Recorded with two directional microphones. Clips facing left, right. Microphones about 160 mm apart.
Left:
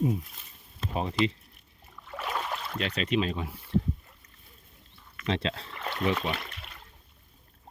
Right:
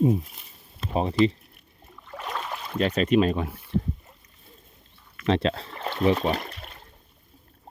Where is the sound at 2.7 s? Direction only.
45° right (ahead or behind).